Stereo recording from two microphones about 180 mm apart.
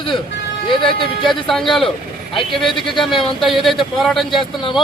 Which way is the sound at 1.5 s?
Centre (ahead or behind).